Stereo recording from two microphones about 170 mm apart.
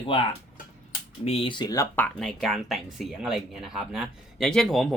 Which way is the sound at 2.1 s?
Centre (ahead or behind).